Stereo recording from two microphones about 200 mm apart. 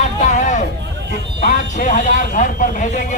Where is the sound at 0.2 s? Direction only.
40° left (ahead or behind).